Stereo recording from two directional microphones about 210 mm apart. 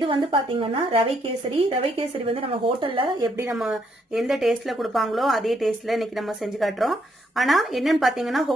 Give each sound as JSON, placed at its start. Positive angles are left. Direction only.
{"t": 0.0, "sound": "speech", "side_deg": -25}
{"t": 3.5, "sound": "speech", "side_deg": 0}